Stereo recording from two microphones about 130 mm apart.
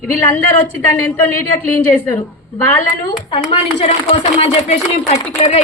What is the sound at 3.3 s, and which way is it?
A woman's voice, 40° left (ahead or behind).